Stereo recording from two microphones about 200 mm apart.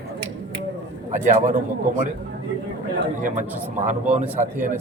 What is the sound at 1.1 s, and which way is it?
Speech, 40° right (ahead or behind).